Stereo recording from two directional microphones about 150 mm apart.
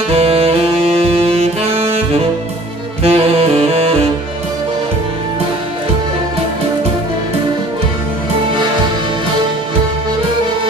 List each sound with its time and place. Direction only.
0.1 s saxophone: 40° right (ahead or behind)
3.0 s saxophone: 40° right (ahead or behind)